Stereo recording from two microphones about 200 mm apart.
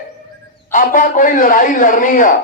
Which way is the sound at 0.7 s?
40° left (ahead or behind).